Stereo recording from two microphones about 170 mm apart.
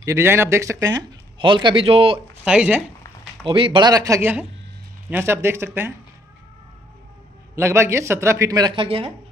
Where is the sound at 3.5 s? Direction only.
30° right (ahead or behind); by 5.9 s 15° right (ahead or behind).